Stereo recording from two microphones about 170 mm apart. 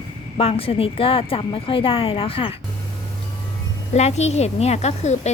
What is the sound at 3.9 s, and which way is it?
Speech, 40° left (ahead or behind).